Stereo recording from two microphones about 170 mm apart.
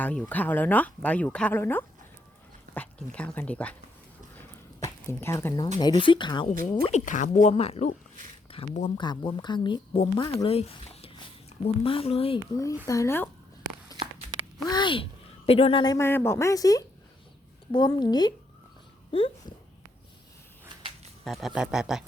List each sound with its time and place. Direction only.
0.0 s speech: 10° left (ahead or behind)
4.8 s speech: 15° left (ahead or behind)
5.8 s a woman's voice: 25° left (ahead or behind)
6.5 s speech: 55° right (ahead or behind)
6.8 s a woman's voice: 45° left (ahead or behind)
12.5 s a woman's voice: 20° left (ahead or behind)
14.0 s a sound: 35° right (ahead or behind)
14.6 s a woman's voice: 25° left (ahead or behind)
21.2 s speech: centre (ahead or behind)